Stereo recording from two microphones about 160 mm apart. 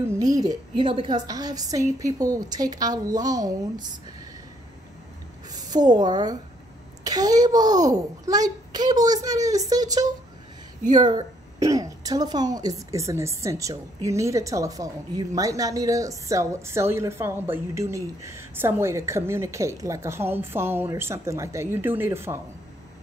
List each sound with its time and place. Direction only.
0.0 s a woman's voice: 20° right (ahead or behind)
5.5 s a woman's voice: 25° right (ahead or behind)